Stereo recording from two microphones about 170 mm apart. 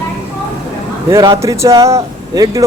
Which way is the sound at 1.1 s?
20° right (ahead or behind).